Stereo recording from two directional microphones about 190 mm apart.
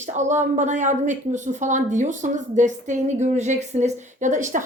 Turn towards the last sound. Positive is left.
turn(degrees=-40)  # may be behind; listen again after turning